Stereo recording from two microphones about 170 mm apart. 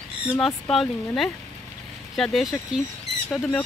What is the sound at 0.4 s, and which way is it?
Speech, centre (ahead or behind).